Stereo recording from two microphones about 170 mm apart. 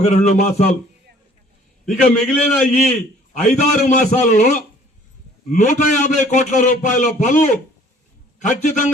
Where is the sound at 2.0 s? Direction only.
5° left (ahead or behind).